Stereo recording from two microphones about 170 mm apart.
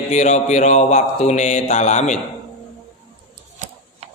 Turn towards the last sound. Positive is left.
turn(degrees=-40)  # may be behind; listen again after turning